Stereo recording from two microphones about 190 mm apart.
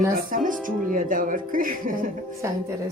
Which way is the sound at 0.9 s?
45° right (ahead or behind).